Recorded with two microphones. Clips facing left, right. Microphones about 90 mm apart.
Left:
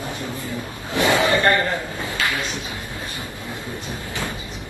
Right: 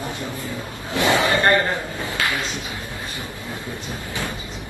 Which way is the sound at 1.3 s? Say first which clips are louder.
Even; 25° right (ahead or behind).